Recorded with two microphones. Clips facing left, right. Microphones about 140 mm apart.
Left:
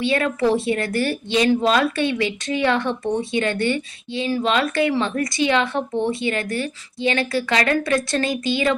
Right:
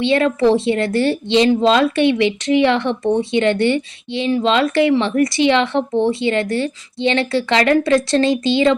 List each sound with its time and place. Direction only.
0.0 s a woman's voice: 25° right (ahead or behind)